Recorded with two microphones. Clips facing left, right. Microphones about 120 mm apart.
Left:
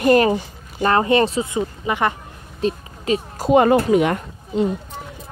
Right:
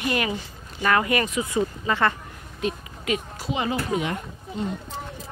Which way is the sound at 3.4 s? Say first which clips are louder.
Left 12 dB; 55° left (ahead or behind).